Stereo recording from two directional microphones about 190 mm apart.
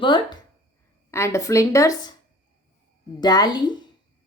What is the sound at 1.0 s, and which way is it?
Speech, 15° left (ahead or behind).